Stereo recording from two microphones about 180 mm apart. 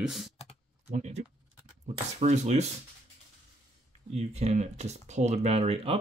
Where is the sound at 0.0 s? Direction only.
Centre (ahead or behind).